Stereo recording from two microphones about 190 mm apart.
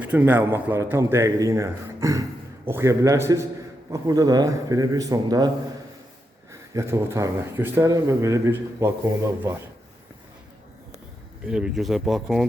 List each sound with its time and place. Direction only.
0.0 s speech: 10° right (ahead or behind)
6.5 s speech: 15° right (ahead or behind)
11.4 s speech: 5° right (ahead or behind)